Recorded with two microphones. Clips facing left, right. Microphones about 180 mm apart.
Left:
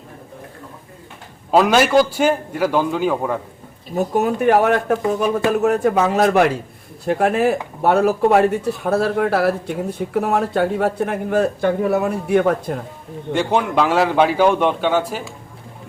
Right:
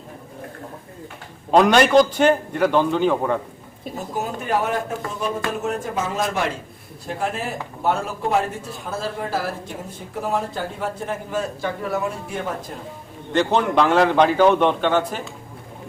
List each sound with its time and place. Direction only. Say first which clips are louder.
1.5 s a man's voice: even; 5° left (ahead or behind)
3.9 s speech: left 10 dB; 65° left (ahead or behind)
13.3 s a man's voice: even; 10° left (ahead or behind)